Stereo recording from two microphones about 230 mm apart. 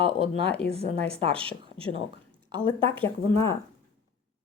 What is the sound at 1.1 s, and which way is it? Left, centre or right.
A woman's voice, right.